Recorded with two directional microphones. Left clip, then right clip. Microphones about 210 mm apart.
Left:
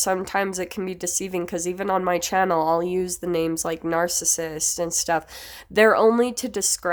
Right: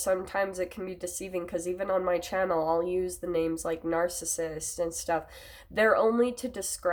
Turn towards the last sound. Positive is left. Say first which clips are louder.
# left 8 dB
turn(degrees=45)  # may be behind; listen again after turning